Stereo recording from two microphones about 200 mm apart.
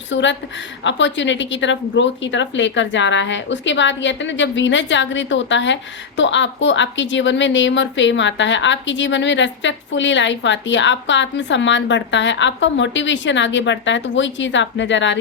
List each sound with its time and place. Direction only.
0.1 s speech: 65° left (ahead or behind)